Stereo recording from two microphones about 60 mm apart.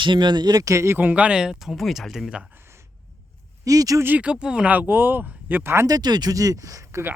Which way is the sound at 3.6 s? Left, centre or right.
Right.